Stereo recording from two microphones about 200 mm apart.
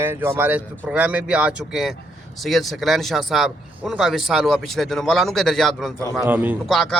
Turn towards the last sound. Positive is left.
turn(degrees=0)  # may be behind; listen again after turning